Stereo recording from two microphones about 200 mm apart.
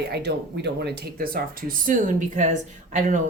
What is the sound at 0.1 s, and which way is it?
Speech, 55° right (ahead or behind).